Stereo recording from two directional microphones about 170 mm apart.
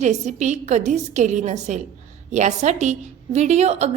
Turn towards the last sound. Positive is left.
turn(degrees=-40)  # may be behind; listen again after turning